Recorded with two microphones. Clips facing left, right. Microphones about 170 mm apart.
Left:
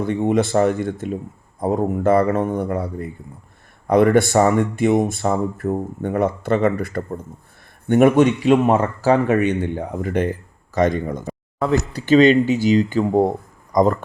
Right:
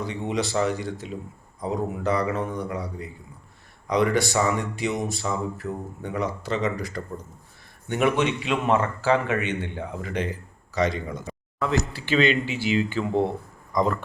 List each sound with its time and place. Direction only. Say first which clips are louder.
0.0 s speech: left 9 dB; 50° left (ahead or behind)